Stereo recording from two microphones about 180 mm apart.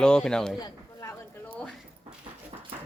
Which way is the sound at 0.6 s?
15° left (ahead or behind).